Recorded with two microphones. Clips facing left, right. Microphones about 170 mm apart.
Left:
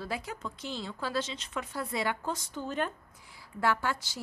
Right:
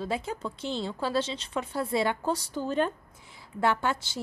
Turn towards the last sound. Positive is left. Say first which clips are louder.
# right 3 dB
turn(degrees=-25)  # may be behind; listen again after turning